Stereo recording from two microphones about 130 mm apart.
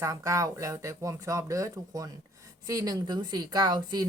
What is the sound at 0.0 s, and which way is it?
A woman's voice, 25° right (ahead or behind).